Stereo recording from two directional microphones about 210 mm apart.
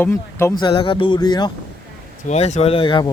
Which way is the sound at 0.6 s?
25° left (ahead or behind).